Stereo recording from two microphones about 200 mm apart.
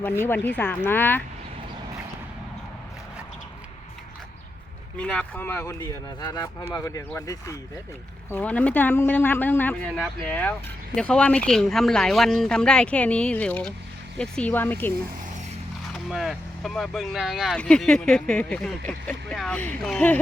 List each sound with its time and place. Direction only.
0.3 s speech: 10° left (ahead or behind)
4.9 s speech: 5° left (ahead or behind)
15.9 s speech: centre (ahead or behind)